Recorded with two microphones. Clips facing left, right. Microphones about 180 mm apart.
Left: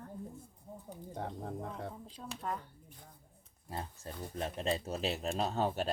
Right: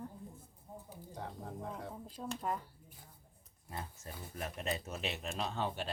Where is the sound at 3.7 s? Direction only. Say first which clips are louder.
Left 3 dB; 30° left (ahead or behind).